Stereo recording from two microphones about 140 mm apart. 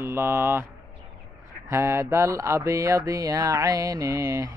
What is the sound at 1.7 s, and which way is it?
Mantra, 20° right (ahead or behind).